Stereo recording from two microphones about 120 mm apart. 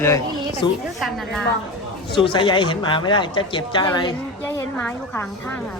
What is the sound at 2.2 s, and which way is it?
Speech, 45° left (ahead or behind).